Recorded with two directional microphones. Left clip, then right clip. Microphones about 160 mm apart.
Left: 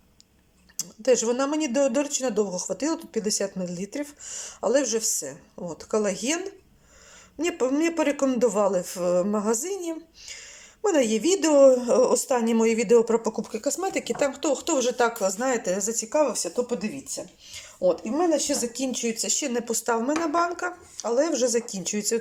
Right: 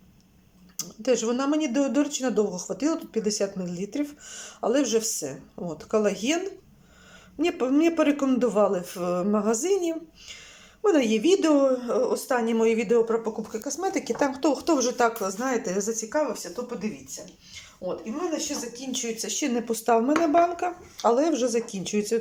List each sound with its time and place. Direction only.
0.8 s speech: centre (ahead or behind); by 13.6 s 15° left (ahead or behind)
13.7 s speech: centre (ahead or behind)
16.0 s speech: 15° left (ahead or behind)
18.9 s speech: 10° left (ahead or behind)